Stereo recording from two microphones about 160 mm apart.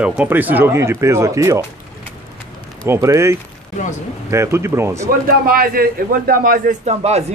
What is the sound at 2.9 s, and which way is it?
Speech, 15° right (ahead or behind).